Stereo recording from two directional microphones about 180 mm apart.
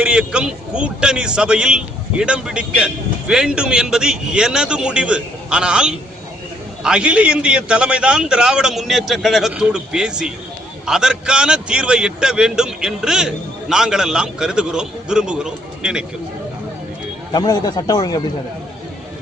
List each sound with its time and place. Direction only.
0.0 s a man's voice: 5° right (ahead or behind)
17.3 s speech: 20° left (ahead or behind)